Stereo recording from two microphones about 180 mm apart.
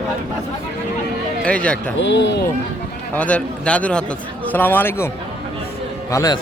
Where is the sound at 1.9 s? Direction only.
90° left.